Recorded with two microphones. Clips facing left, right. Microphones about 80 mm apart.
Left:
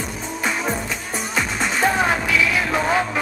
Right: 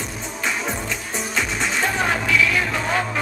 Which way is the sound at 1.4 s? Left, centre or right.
Centre.